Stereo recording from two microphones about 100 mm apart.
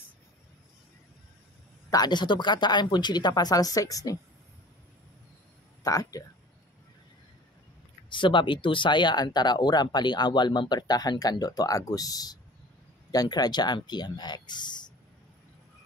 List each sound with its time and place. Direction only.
1.9 s speech: 45° left (ahead or behind)
5.9 s speech: 35° left (ahead or behind)
8.1 s speech: 55° left (ahead or behind)